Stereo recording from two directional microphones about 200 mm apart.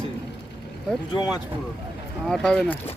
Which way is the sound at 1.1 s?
20° left (ahead or behind).